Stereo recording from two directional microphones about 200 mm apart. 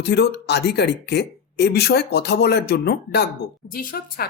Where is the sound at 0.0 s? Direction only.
55° left (ahead or behind).